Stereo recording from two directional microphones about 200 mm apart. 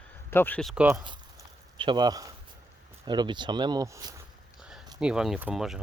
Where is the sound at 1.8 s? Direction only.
20° right (ahead or behind).